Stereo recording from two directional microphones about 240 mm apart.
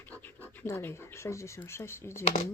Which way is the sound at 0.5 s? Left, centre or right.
Centre.